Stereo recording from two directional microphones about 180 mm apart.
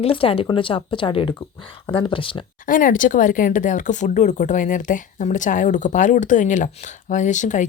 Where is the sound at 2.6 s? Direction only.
50° left (ahead or behind).